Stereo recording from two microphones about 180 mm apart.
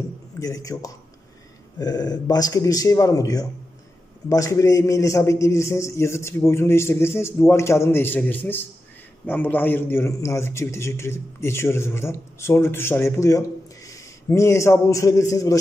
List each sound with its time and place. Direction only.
0.4 s a man's voice: 20° left (ahead or behind)